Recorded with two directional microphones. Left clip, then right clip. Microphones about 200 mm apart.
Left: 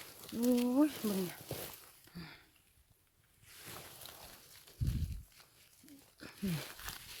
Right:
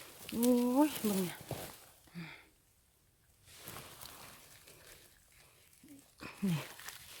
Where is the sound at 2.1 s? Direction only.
10° left (ahead or behind).